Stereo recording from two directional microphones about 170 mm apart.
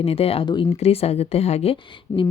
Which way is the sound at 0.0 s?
35° left (ahead or behind).